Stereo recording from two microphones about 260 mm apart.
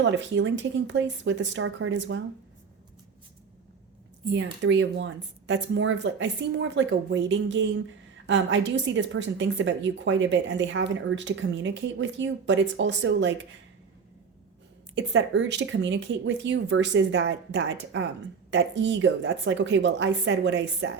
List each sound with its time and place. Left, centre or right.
0.0 s a woman's voice: right
4.3 s a woman's voice: right
14.9 s a woman's voice: right